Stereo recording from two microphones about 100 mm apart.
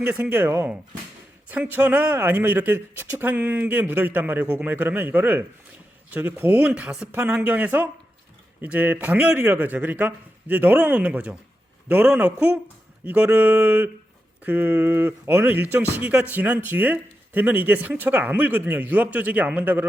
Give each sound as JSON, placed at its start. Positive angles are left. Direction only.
{"t": 0.0, "sound": "speech", "side_deg": -20}